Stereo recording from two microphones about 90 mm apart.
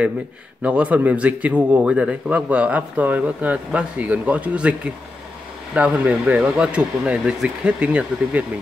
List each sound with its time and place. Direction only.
0.6 s a man's voice: 15° right (ahead or behind)
5.8 s a man's voice: 15° right (ahead or behind)